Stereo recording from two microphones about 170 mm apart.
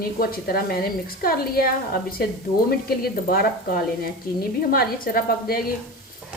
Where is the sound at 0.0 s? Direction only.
60° left (ahead or behind).